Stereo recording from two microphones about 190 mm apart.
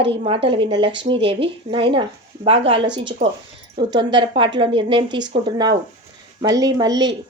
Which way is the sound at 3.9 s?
25° right (ahead or behind).